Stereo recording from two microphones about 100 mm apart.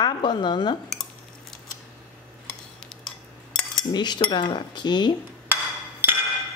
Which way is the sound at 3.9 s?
45° left (ahead or behind).